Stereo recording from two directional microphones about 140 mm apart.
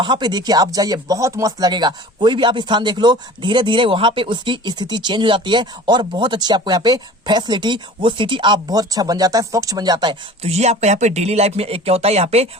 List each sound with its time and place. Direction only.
0.0 s speech: 30° right (ahead or behind)
10.4 s speech: 50° right (ahead or behind)